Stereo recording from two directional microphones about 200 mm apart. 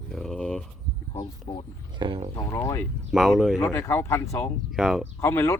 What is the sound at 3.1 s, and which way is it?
Speech, centre (ahead or behind).